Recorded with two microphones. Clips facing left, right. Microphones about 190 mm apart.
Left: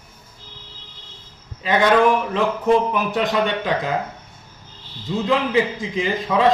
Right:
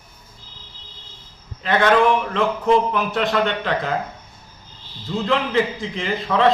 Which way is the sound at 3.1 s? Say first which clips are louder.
Even; 15° left (ahead or behind).